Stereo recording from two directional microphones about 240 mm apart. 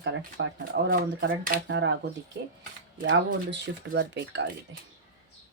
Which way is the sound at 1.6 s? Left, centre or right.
Right.